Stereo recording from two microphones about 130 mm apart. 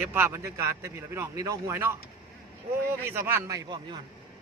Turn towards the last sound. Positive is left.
turn(degrees=-30)  # may be behind; listen again after turning